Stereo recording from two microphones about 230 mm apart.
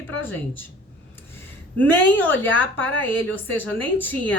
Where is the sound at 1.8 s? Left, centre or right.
Centre.